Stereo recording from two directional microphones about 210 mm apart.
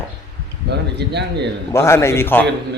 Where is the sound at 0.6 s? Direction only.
50° right (ahead or behind).